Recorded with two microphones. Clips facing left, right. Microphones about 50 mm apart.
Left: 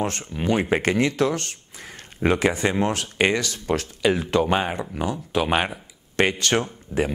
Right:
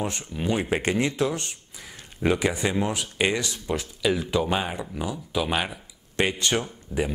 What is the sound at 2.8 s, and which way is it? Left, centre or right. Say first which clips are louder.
Speech: left 4 dB; left.